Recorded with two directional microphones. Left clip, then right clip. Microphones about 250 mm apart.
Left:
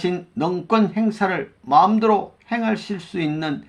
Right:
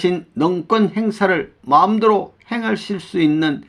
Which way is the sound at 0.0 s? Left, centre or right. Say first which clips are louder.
Right 5 dB; right.